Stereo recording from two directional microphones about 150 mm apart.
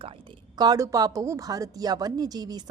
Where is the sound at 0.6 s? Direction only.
25° right (ahead or behind).